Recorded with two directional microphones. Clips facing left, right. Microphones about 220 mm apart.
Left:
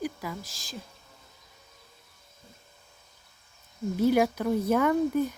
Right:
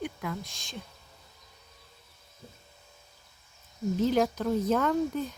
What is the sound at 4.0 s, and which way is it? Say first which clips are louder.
Speech: left 3 dB; 10° left (ahead or behind).